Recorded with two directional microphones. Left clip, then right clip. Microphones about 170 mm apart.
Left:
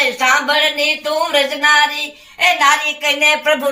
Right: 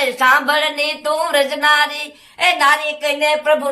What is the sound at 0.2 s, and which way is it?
Speech, 15° right (ahead or behind).